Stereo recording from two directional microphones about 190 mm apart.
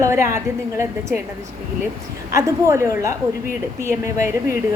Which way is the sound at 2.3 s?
15° right (ahead or behind).